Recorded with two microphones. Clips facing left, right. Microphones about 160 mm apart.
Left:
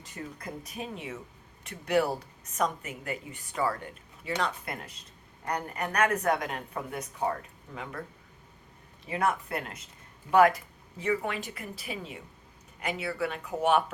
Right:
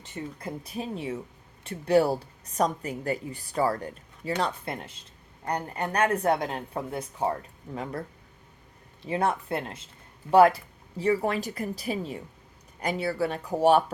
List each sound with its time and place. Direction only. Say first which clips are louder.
0.0 s a woman's voice: right 4 dB; 25° right (ahead or behind)
9.0 s a woman's voice: right 3 dB; 30° right (ahead or behind)